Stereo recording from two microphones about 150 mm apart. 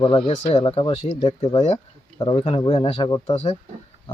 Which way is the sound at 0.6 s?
35° left (ahead or behind).